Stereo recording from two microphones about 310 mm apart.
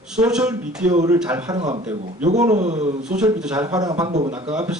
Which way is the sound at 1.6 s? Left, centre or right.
Right.